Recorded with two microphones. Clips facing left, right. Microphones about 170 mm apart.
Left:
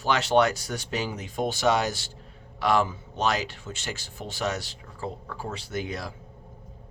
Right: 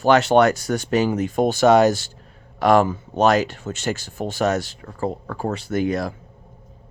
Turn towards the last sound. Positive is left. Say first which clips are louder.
# right 10 dB
turn(degrees=-50)  # may be behind; listen again after turning